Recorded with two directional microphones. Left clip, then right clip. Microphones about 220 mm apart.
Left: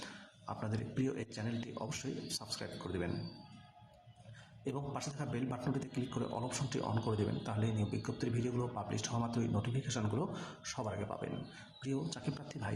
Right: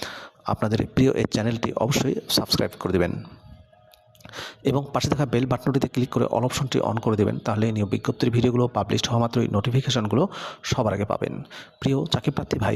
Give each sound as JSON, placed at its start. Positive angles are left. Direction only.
{"t": 0.4, "sound": "speech", "side_deg": -45}
{"t": 4.6, "sound": "speech", "side_deg": -45}